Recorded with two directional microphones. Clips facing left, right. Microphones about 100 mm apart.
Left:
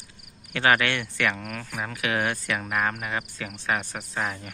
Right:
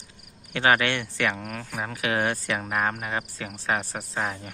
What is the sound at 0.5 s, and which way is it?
Speech, 25° right (ahead or behind).